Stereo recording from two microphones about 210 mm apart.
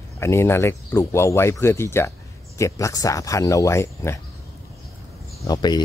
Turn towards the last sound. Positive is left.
turn(degrees=20)  # may be behind; listen again after turning